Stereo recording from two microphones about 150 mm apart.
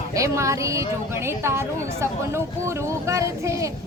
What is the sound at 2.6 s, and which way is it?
Speech, 20° right (ahead or behind).